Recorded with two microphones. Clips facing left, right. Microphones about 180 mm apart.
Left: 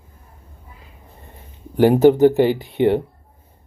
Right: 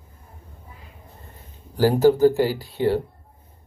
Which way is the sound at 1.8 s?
20° left (ahead or behind).